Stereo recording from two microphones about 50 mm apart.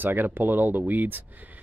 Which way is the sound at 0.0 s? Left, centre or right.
Right.